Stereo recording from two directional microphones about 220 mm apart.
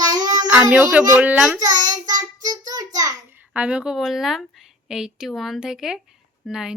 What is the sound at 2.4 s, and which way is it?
A child's voice, 15° right (ahead or behind).